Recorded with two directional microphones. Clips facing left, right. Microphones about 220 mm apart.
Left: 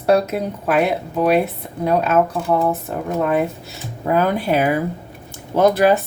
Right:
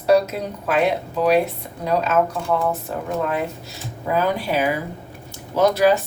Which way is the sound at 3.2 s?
55° left (ahead or behind).